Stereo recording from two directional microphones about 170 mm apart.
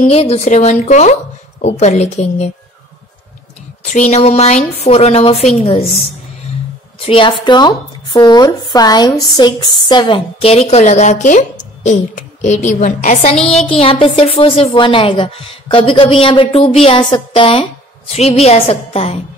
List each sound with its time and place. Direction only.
0.0 s speech: 35° left (ahead or behind)
3.8 s speech: 45° left (ahead or behind)
7.1 s speech: 30° left (ahead or behind); by 13.4 s 45° left (ahead or behind)
13.7 s speech: 30° left (ahead or behind)